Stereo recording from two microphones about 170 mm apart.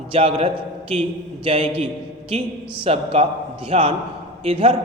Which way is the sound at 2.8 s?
35° right (ahead or behind).